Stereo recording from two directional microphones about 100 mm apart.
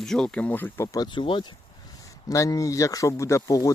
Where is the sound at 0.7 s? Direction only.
35° left (ahead or behind).